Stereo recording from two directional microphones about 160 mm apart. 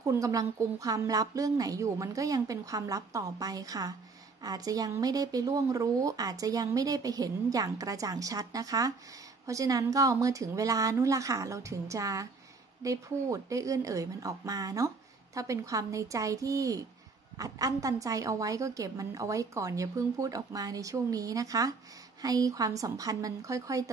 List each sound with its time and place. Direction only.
0.0 s speech: 20° right (ahead or behind)